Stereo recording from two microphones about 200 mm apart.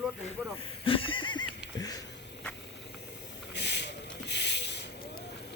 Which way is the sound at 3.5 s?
60° left (ahead or behind).